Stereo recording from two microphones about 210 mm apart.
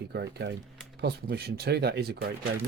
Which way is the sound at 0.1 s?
55° right (ahead or behind).